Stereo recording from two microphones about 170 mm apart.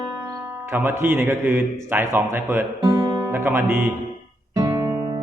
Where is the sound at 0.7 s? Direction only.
10° right (ahead or behind).